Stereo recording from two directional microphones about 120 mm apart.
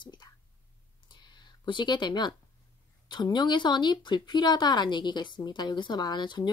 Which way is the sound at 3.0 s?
40° left (ahead or behind).